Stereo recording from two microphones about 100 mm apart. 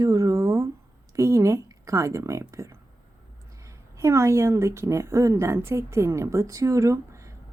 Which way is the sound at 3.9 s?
30° right (ahead or behind).